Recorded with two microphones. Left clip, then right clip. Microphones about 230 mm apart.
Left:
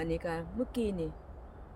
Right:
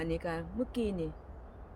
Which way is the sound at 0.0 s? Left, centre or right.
Centre.